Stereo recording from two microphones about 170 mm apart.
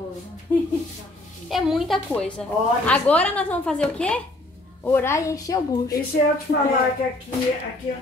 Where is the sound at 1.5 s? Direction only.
Centre (ahead or behind); by 5.9 s 20° left (ahead or behind).